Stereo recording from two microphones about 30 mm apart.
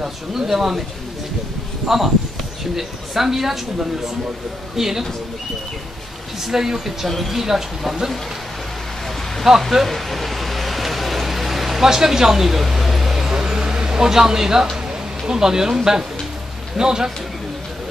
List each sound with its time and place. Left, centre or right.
0.3 s speech: centre
1.9 s speech: centre
4.7 s speech: centre
6.4 s speech: centre
7.1 s speech: centre
7.4 s speech: centre
9.6 s a sound: centre; by 14.7 s right
15.2 s speech: right